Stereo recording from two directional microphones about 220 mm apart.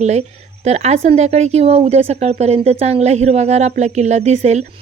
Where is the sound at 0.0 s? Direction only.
30° right (ahead or behind).